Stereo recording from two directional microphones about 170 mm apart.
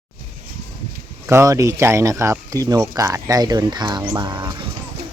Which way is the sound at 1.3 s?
20° right (ahead or behind).